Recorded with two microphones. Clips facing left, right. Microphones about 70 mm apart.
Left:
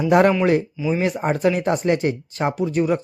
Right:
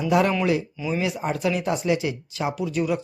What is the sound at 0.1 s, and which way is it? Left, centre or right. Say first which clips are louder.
Speech: left 5 dB; left.